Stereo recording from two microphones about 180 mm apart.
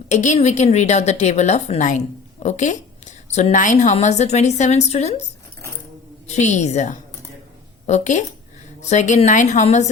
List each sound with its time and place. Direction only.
0.1 s a woman's voice: 40° left (ahead or behind)
6.2 s a woman's voice: 40° left (ahead or behind)